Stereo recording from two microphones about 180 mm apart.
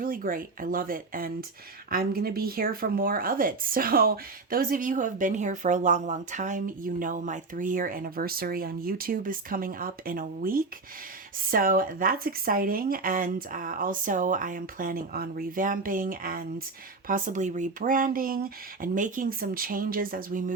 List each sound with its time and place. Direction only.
0.0 s speech: 50° right (ahead or behind)